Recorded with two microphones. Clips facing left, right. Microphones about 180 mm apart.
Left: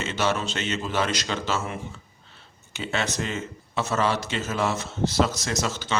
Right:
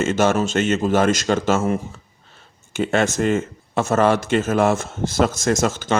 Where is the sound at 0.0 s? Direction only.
45° right (ahead or behind).